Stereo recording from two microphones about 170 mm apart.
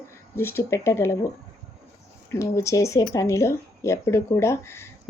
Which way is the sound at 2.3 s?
15° left (ahead or behind).